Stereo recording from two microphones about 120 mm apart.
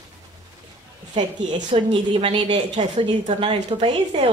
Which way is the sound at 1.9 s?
50° right (ahead or behind).